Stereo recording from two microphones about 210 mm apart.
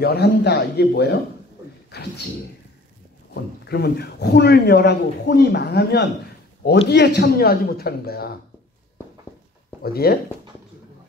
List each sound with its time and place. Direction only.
0.0 s a man's voice: 50° left (ahead or behind)
3.6 s a man's voice: 50° left (ahead or behind)
10.0 s a man's voice: 45° left (ahead or behind)